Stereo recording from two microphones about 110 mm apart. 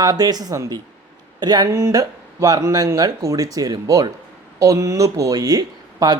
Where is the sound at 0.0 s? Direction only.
35° right (ahead or behind).